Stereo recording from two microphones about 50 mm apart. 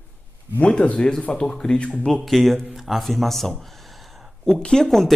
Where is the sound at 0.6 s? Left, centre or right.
Left.